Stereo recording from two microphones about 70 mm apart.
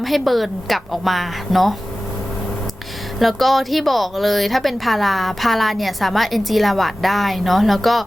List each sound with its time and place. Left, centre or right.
0.0 s speech: centre
3.2 s speech: centre